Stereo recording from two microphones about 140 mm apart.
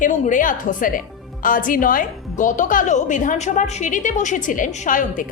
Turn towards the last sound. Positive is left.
turn(degrees=70)  # may be behind; listen again after turning